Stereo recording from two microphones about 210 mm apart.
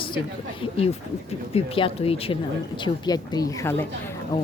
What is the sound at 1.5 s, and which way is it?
Speech, 25° left (ahead or behind).